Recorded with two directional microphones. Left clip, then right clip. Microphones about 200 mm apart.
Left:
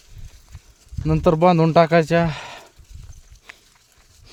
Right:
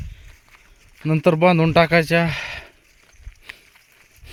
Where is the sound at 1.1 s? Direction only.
5° left (ahead or behind).